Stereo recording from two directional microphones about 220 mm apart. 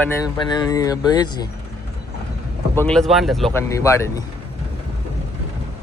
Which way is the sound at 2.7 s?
5° left (ahead or behind).